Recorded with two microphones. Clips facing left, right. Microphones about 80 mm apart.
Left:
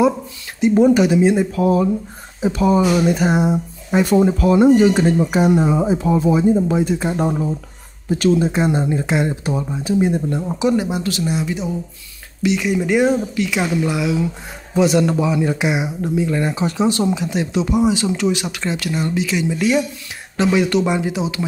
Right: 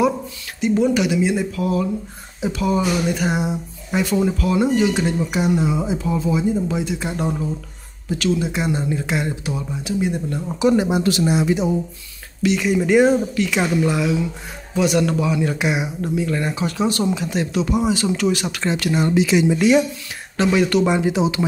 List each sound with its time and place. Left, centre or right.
0.6 s speech: left
6.5 s speech: left
10.7 s speech: centre
12.4 s speech: centre
14.8 s speech: left; by 18.9 s centre
18.9 s speech: centre
20.3 s speech: centre